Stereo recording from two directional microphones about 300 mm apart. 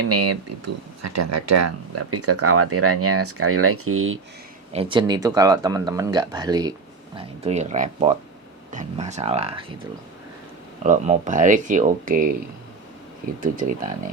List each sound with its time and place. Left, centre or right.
0.1 s speech: right
4.7 s speech: centre
10.8 s speech: right
13.4 s speech: right